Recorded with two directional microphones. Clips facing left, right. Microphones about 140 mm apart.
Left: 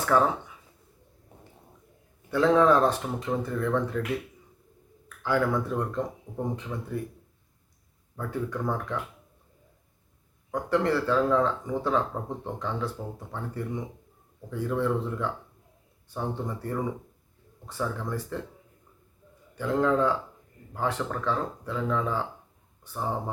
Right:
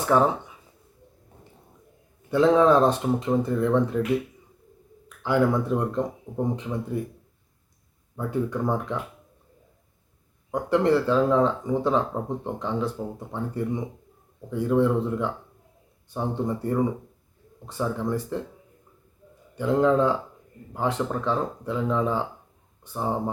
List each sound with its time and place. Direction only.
0.0 s speech: 20° right (ahead or behind)
2.3 s speech: 20° right (ahead or behind)
5.0 s speech: 20° right (ahead or behind)
8.1 s speech: 20° right (ahead or behind)
10.5 s speech: 20° right (ahead or behind)
19.5 s speech: 20° right (ahead or behind)